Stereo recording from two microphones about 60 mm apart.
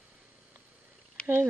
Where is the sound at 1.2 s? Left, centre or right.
Right.